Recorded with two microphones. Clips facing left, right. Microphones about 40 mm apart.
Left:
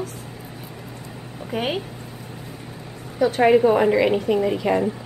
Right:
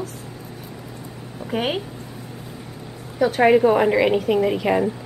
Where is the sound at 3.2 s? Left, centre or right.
Centre.